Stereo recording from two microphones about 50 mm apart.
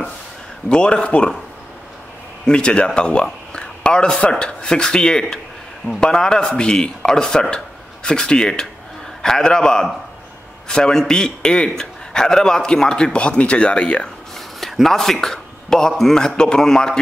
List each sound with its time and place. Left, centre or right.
0.7 s speech: centre
2.4 s a man's voice: centre
14.6 s a man's voice: centre